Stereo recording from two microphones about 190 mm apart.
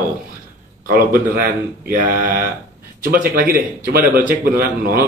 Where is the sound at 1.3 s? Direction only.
50° right (ahead or behind).